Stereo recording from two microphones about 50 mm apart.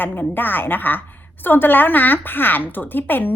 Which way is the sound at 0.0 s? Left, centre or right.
Left.